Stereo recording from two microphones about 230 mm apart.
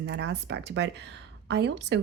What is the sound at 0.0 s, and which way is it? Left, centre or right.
A woman's voice, right.